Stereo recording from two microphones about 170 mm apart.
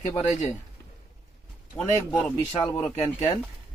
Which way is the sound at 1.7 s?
10° left (ahead or behind).